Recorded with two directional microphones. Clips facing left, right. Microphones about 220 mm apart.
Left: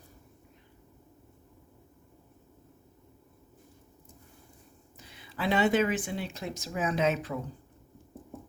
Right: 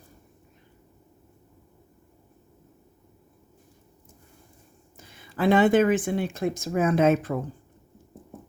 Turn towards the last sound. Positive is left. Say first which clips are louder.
# right 7 dB
turn(degrees=-50)  # may be behind; listen again after turning